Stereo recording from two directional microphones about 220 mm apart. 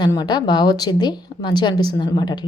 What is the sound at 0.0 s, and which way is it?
A woman's voice, 20° left (ahead or behind).